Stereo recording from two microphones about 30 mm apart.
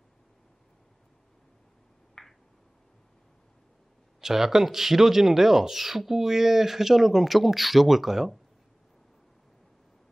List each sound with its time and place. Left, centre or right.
2.2 s finger snapping: centre
4.2 s speech: centre